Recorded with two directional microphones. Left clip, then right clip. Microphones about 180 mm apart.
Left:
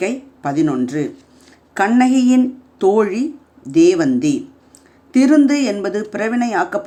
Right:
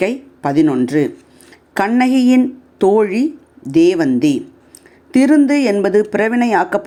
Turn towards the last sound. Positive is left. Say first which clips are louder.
# right 4 dB
turn(degrees=-25)  # may be behind; listen again after turning